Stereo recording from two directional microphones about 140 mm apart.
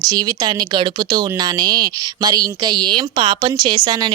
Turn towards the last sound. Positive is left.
turn(degrees=-30)  # may be behind; listen again after turning